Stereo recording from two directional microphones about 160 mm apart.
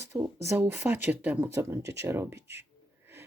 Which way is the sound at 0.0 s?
20° right (ahead or behind).